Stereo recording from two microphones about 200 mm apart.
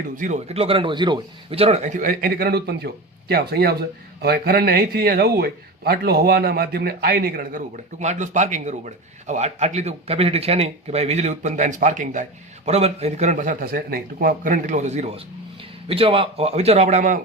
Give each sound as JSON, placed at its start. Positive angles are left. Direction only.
{"t": 0.2, "sound": "a man's voice", "side_deg": -35}